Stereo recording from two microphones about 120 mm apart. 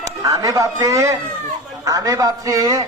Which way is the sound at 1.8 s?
30° right (ahead or behind).